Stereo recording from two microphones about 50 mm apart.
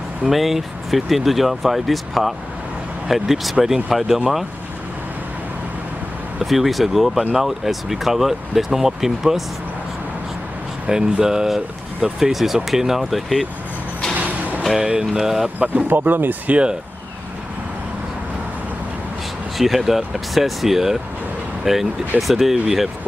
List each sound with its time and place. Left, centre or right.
0.3 s speech: centre
6.4 s speech: centre
10.9 s speech: centre
14.1 s music: right
14.8 s speech: centre
15.6 s speech: right
19.5 s speech: centre